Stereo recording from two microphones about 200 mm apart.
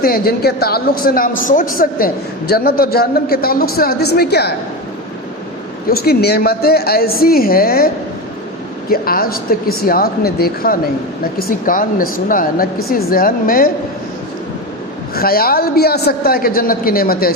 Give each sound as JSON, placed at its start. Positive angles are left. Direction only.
{"t": 0.0, "sound": "speech", "side_deg": 50}
{"t": 5.9, "sound": "speech", "side_deg": 50}
{"t": 8.9, "sound": "speech", "side_deg": 50}
{"t": 15.1, "sound": "speech", "side_deg": 50}